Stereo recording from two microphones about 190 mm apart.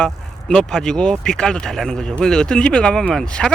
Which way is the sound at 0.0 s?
5° left (ahead or behind).